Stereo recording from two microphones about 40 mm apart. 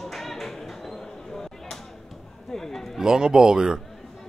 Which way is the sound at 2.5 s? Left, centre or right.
Centre.